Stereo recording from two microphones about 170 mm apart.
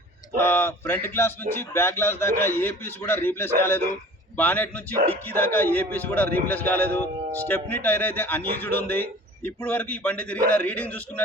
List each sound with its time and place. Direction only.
0.3 s a man's voice: 15° left (ahead or behind)